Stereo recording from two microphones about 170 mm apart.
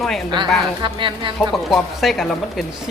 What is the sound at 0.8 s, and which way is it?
Speech, 30° right (ahead or behind).